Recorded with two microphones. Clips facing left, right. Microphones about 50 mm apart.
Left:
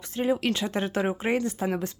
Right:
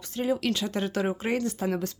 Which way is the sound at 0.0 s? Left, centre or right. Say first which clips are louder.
Left 2 dB; left.